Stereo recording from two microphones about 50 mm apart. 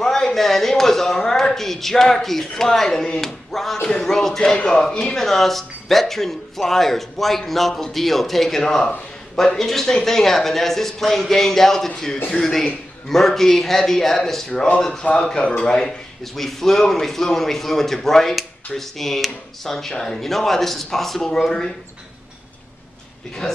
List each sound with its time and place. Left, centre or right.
0.0 s speech: centre
5.1 s speech: centre
14.5 s speech: left
16.3 s speech: centre
23.4 s speech: centre